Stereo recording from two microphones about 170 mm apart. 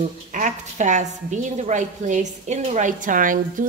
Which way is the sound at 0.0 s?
50° right (ahead or behind).